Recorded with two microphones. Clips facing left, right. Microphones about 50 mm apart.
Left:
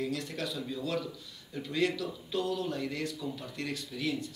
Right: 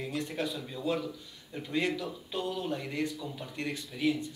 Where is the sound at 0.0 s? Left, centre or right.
Right.